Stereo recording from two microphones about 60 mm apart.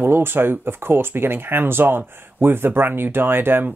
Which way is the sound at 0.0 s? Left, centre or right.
Right.